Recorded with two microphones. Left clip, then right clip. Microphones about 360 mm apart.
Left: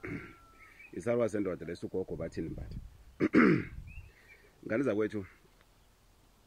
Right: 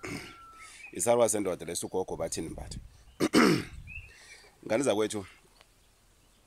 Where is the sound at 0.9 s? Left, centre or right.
Centre.